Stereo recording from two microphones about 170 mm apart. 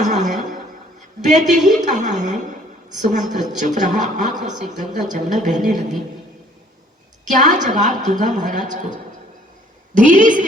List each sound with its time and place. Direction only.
0.0 s a sound: 45° right (ahead or behind)
1.2 s a woman's voice: 45° right (ahead or behind)
7.3 s a woman's voice: 45° right (ahead or behind)
9.9 s a woman's voice: 50° right (ahead or behind)